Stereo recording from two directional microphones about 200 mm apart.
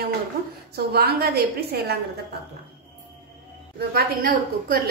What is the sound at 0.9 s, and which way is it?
A woman's voice, 50° right (ahead or behind).